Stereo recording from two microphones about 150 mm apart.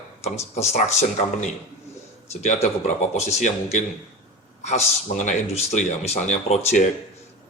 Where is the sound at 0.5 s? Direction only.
50° left (ahead or behind).